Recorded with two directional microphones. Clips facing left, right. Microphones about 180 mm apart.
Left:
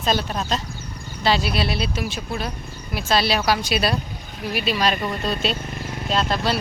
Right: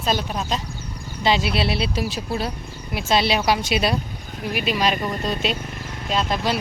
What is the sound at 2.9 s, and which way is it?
A woman's voice, 20° right (ahead or behind).